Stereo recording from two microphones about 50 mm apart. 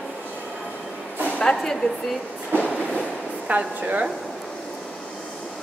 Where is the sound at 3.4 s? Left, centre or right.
Right.